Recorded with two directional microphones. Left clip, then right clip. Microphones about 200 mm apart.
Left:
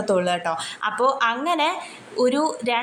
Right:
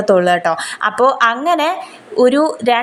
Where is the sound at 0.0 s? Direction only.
20° right (ahead or behind).